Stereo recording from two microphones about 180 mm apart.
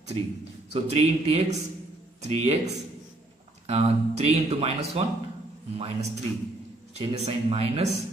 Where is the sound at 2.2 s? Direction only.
35° right (ahead or behind).